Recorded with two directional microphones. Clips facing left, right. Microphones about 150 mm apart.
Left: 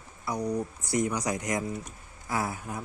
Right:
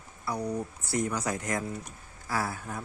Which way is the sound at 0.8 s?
15° left (ahead or behind).